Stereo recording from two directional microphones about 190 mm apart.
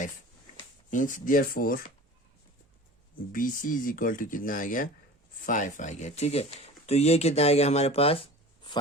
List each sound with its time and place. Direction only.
0.9 s speech: 45° left (ahead or behind)
3.3 s speech: 45° left (ahead or behind); by 8.8 s 25° left (ahead or behind)